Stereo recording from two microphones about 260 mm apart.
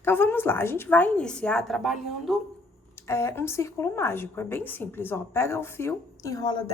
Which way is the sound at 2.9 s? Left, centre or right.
Centre.